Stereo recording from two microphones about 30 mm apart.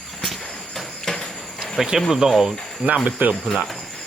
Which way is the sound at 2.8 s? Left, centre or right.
Right.